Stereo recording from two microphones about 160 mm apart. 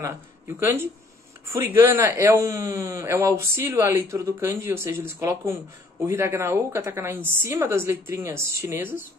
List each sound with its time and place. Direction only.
0.6 s speech: 15° right (ahead or behind)